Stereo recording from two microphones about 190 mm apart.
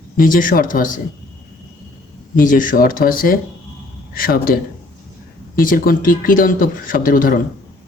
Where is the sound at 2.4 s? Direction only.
45° left (ahead or behind).